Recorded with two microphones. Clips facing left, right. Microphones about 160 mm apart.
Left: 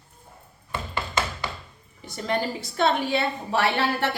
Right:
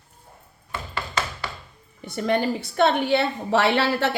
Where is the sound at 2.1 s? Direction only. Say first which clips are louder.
Right 4 dB; 60° right (ahead or behind); by 4.1 s 85° right.